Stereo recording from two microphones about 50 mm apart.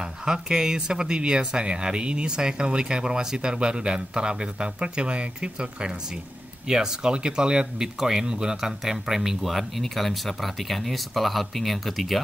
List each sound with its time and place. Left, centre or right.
0.0 s speech: centre